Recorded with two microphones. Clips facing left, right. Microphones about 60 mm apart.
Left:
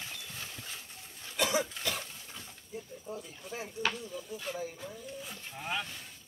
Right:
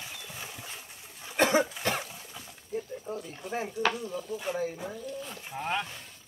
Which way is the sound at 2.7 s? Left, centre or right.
Right.